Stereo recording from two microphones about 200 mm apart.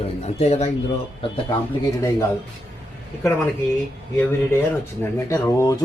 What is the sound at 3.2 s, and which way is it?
Speech, 10° left (ahead or behind).